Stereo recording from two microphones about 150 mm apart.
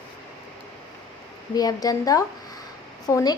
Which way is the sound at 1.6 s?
25° left (ahead or behind).